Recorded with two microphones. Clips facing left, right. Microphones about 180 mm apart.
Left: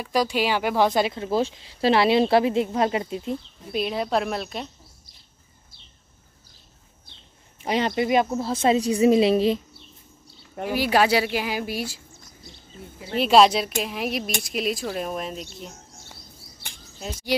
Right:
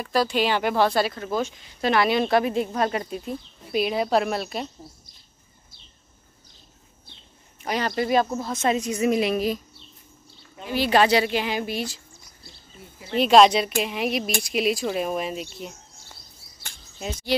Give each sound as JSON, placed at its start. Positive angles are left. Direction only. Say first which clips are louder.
{"t": 0.0, "sound": "speech", "louder": "even", "side_deg": 10}
{"t": 0.8, "sound": "speech", "louder": "left 1 dB", "side_deg": 20}
{"t": 3.7, "sound": "speech", "louder": "right 2 dB", "side_deg": -5}
{"t": 7.6, "sound": "speech", "louder": "left 2 dB", "side_deg": 25}
{"t": 8.4, "sound": "speech", "louder": "left 3 dB", "side_deg": 30}
{"t": 10.7, "sound": "speech", "louder": "right 1 dB", "side_deg": 10}
{"t": 13.2, "sound": "speech", "louder": "right 1 dB", "side_deg": 5}